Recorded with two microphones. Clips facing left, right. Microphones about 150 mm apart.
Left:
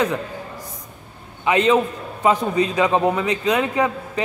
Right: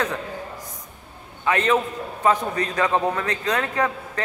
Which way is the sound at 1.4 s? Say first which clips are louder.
Left 4 dB; 15° left (ahead or behind).